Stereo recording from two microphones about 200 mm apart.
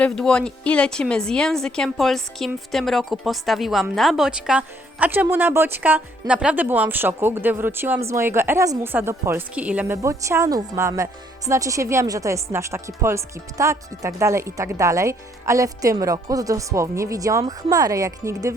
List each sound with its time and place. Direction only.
0.0 s a woman's voice: 5° left (ahead or behind); by 18.5 s 15° right (ahead or behind)